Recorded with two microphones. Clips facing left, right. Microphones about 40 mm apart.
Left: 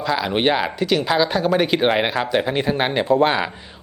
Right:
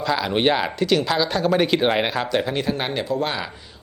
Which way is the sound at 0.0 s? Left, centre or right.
Centre.